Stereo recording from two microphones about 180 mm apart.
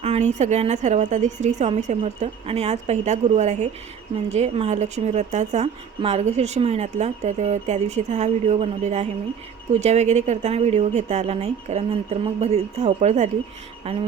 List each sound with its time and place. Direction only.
0.0 s a woman's voice: 35° right (ahead or behind)